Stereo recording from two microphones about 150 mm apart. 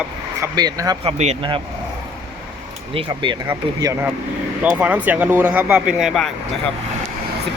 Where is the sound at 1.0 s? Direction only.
45° right (ahead or behind).